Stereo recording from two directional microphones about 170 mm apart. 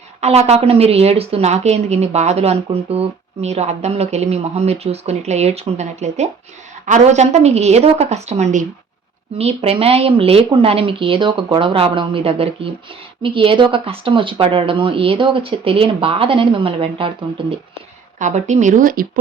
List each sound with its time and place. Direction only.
0.2 s a woman's voice: 40° right (ahead or behind)
18.2 s speech: 45° right (ahead or behind)